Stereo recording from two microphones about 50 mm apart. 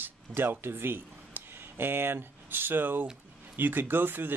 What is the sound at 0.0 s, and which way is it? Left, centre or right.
Speech, right.